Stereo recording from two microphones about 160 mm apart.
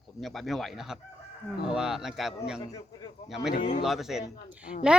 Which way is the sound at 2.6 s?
25° left (ahead or behind).